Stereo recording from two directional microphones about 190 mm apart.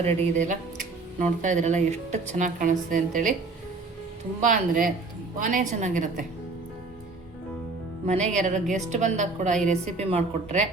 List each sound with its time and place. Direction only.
0.0 s speech: 40° right (ahead or behind)
4.4 s a woman's voice: 45° right (ahead or behind)
8.0 s speech: 35° right (ahead or behind)